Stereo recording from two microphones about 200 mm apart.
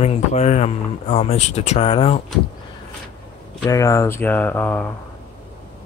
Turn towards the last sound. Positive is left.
turn(degrees=10)  # may be behind; listen again after turning